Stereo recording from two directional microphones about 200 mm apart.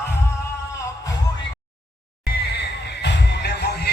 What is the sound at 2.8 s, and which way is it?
Music, 60° left (ahead or behind).